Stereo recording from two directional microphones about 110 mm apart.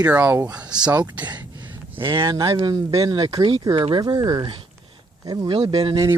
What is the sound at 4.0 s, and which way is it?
Speech, 35° right (ahead or behind).